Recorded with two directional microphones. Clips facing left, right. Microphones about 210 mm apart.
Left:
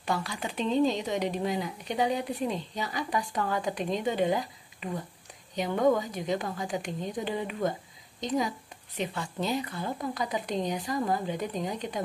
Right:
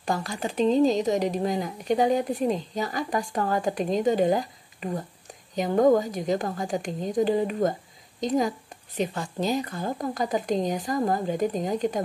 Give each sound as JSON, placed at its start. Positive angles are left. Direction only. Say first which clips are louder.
{"t": 0.0, "sound": "speech", "louder": "right 3 dB", "side_deg": -45}